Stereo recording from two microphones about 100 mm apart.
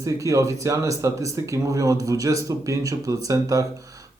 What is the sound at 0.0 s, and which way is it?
Speech, 35° right (ahead or behind).